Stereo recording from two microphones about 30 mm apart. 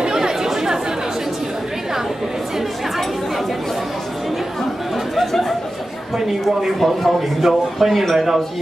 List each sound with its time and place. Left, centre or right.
0.0 s chatter: centre
4.9 s chatter: centre
6.8 s a man's voice: centre